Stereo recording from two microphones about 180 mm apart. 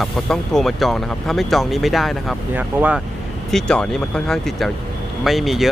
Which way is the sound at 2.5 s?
10° right (ahead or behind).